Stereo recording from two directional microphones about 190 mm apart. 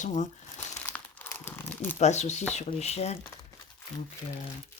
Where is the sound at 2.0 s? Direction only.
35° left (ahead or behind).